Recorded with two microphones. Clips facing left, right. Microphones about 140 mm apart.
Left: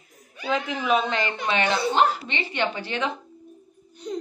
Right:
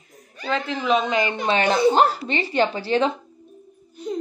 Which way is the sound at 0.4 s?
10° left (ahead or behind).